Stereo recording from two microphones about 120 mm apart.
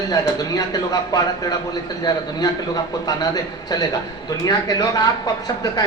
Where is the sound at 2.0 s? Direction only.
35° left (ahead or behind).